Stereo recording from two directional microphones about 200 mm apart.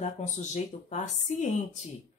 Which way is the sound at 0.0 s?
35° left (ahead or behind).